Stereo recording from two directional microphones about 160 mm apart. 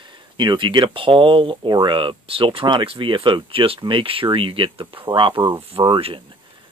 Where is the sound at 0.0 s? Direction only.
30° right (ahead or behind).